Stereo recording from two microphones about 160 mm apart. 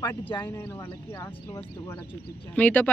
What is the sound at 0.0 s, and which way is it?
Speech, 30° left (ahead or behind).